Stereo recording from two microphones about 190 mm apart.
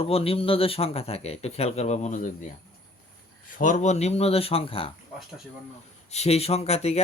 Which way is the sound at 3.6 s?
45° left (ahead or behind).